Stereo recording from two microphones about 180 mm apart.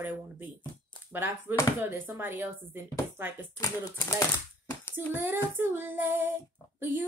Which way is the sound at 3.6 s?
20° left (ahead or behind).